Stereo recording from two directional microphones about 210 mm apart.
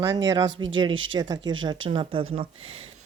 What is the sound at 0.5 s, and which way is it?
Speech, 65° right (ahead or behind).